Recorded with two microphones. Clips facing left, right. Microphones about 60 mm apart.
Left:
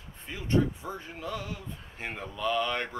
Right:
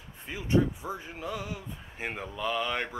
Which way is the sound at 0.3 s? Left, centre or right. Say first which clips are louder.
Right 1 dB; centre.